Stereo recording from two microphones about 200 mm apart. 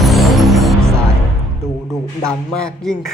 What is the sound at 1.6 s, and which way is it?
Music, 15° right (ahead or behind).